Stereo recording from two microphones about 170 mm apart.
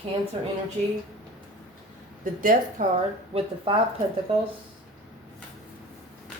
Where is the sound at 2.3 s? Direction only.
50° right (ahead or behind).